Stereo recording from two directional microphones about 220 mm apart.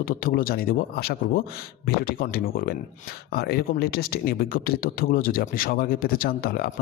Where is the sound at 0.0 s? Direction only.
40° left (ahead or behind).